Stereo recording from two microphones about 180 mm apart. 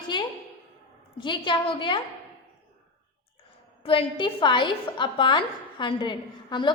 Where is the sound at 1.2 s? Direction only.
25° left (ahead or behind).